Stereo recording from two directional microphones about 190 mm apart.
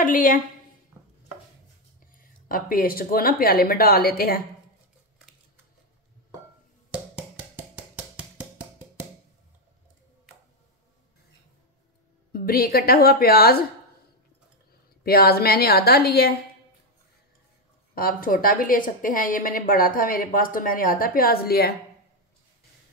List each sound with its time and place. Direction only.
0.0 s a woman's voice: 45° left (ahead or behind)
2.1 s a woman's voice: 50° left (ahead or behind)
6.9 s a sound: 5° right (ahead or behind)
12.3 s a woman's voice: 50° left (ahead or behind)
15.0 s a woman's voice: 55° left (ahead or behind)
17.9 s a woman's voice: 50° left (ahead or behind)